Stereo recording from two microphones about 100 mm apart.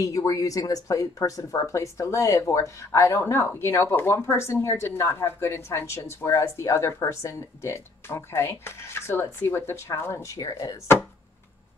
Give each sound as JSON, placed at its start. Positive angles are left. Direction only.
{"t": 0.0, "sound": "speech", "side_deg": 35}